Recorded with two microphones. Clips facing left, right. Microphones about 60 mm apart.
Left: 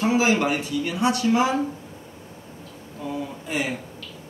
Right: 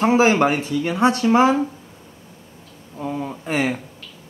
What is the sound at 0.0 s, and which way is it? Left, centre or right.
Speech, right.